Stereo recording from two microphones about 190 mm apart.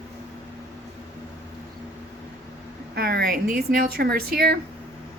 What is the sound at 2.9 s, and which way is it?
Speech, 55° right (ahead or behind).